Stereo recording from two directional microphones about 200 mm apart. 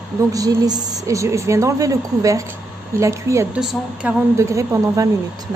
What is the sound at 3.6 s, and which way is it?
Speech, 5° right (ahead or behind).